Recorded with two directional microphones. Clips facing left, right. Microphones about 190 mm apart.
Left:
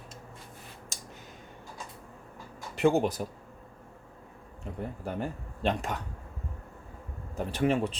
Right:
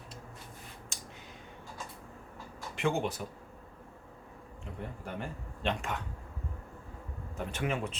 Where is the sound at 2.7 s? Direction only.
40° left (ahead or behind).